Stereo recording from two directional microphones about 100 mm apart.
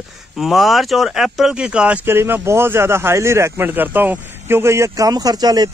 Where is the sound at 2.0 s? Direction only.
25° right (ahead or behind).